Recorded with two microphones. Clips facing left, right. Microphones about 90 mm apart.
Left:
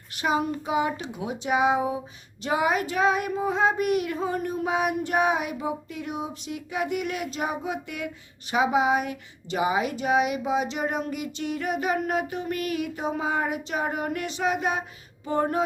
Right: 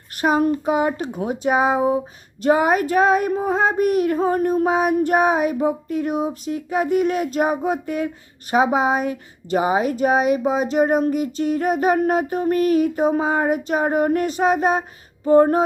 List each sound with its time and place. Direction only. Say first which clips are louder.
0.2 s child singing: right 7 dB; 50° right (ahead or behind)